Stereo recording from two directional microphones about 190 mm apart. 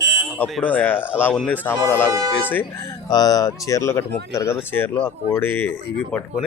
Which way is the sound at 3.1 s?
20° left (ahead or behind).